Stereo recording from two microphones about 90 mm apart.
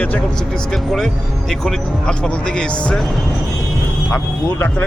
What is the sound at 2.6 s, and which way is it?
Speech, 10° left (ahead or behind).